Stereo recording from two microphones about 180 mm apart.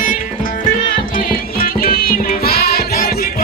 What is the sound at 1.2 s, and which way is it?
Music, 55° left (ahead or behind).